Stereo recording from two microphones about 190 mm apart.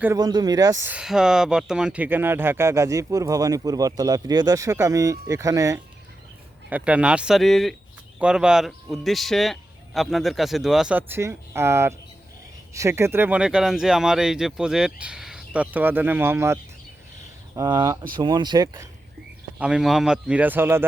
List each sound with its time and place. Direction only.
0.0 s speech: 15° right (ahead or behind)
19.5 s speech: 5° right (ahead or behind)